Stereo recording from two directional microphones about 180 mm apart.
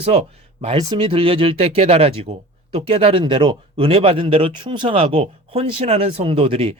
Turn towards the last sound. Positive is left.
turn(degrees=-30)  # may be behind; listen again after turning